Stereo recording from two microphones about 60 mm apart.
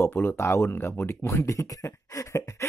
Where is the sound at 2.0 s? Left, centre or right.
Left.